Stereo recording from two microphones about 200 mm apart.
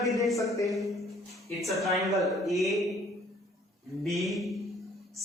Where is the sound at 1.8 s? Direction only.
Centre (ahead or behind).